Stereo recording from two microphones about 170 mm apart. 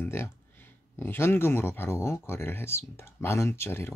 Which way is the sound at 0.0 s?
15° left (ahead or behind).